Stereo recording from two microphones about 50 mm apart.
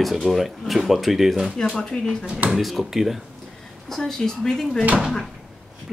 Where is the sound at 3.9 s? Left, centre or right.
Centre.